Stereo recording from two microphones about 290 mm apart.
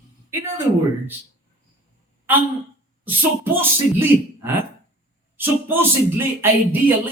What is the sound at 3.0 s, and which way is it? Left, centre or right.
Speech, centre.